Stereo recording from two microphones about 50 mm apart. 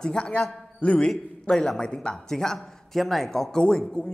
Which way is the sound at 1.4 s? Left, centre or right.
Centre.